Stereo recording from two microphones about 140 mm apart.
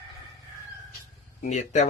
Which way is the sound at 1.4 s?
55° left (ahead or behind).